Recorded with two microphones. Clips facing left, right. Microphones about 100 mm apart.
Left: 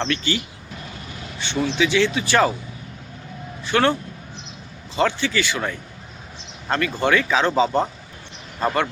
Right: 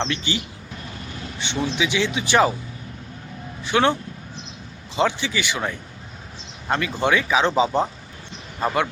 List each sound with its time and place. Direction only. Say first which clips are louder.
0.0 s speech: left 2 dB; 20° right (ahead or behind)
1.6 s speech: left 4 dB; 15° right (ahead or behind)
3.6 s speech: even; 15° right (ahead or behind)
4.9 s speech: left 1 dB; 15° right (ahead or behind)